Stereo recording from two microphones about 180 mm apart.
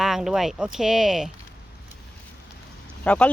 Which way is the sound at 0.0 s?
Centre (ahead or behind).